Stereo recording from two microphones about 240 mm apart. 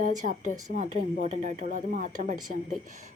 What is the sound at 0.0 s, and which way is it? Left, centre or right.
A woman's voice, right.